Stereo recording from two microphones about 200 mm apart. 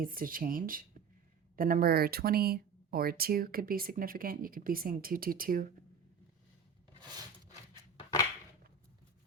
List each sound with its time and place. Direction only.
0.0 s speech: 45° right (ahead or behind)